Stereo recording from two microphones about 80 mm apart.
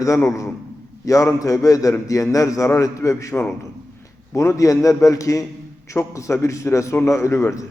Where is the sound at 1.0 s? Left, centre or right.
Left.